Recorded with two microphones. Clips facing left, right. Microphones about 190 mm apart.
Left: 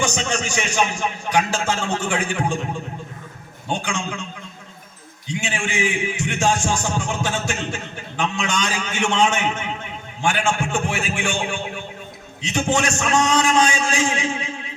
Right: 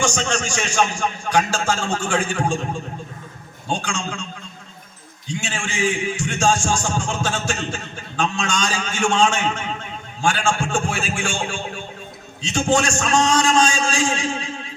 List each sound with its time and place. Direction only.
0.0 s a man's voice: 20° left (ahead or behind)
3.7 s a man's voice: 20° left (ahead or behind)
5.3 s a man's voice: 20° left (ahead or behind)